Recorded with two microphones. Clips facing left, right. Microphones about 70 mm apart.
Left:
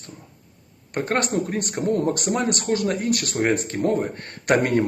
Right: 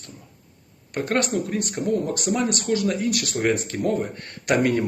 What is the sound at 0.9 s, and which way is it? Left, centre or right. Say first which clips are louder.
Speech: even; left.